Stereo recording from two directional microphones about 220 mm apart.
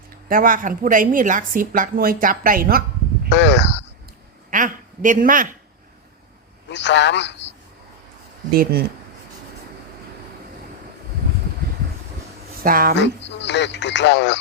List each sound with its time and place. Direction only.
0.3 s a woman's voice: 40° right (ahead or behind)
3.2 s speech: 55° left (ahead or behind)
4.5 s a woman's voice: 35° right (ahead or behind)
6.7 s speech: 55° left (ahead or behind)
8.5 s speech: 45° right (ahead or behind)
12.5 s speech: 40° right (ahead or behind)
13.0 s speech: 55° left (ahead or behind)